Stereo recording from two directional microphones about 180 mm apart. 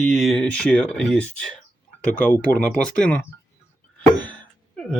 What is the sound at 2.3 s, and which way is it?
Speech, 10° left (ahead or behind).